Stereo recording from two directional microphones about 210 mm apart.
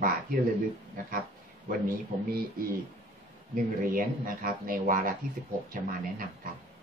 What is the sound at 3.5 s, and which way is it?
Speech, 40° right (ahead or behind).